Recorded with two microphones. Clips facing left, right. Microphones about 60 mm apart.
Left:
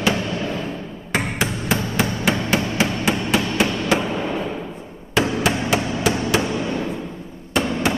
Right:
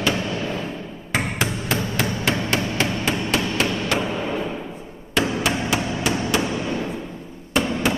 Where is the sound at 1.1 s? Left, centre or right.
Centre.